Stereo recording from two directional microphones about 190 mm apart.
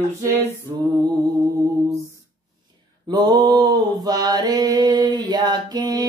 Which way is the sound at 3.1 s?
20° right (ahead or behind).